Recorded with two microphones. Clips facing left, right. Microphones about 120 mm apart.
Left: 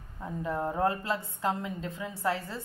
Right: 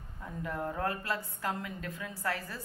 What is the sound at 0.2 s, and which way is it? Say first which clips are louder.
A woman's voice: left 5 dB; 25° left (ahead or behind).